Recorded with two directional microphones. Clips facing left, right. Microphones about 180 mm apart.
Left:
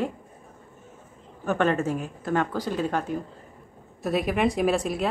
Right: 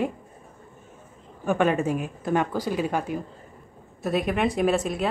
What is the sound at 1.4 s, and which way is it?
Speech, 10° right (ahead or behind).